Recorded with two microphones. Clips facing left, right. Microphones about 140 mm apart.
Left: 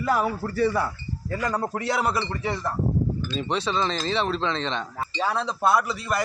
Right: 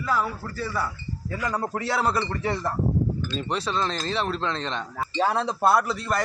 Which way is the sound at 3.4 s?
5° right (ahead or behind).